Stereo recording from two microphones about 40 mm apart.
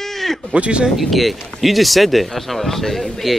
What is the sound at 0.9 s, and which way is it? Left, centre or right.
Speech, centre.